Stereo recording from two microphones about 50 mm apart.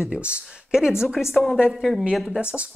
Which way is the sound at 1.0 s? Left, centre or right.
Centre.